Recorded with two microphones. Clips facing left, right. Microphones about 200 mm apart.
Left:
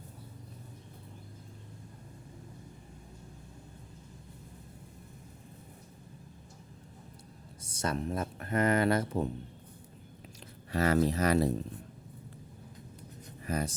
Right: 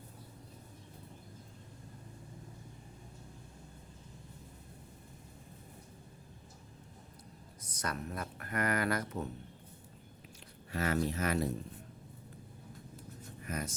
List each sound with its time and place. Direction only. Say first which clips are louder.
7.6 s speech: left 6 dB; 25° left (ahead or behind)
10.7 s speech: left 6 dB; 35° left (ahead or behind)
13.4 s speech: left 6 dB; 35° left (ahead or behind)